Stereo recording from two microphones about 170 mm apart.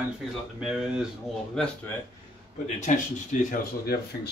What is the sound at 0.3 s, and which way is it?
Speech, 5° right (ahead or behind).